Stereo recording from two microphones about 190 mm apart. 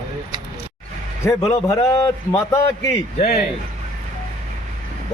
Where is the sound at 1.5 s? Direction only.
15° left (ahead or behind).